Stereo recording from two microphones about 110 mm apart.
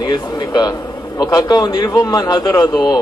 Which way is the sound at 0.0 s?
40° left (ahead or behind).